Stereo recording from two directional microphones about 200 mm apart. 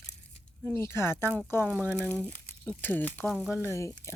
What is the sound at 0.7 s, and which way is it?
Speech, 10° left (ahead or behind).